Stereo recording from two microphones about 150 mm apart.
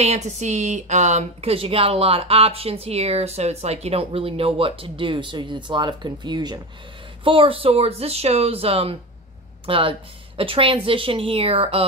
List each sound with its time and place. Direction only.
0.0 s speech: 45° right (ahead or behind)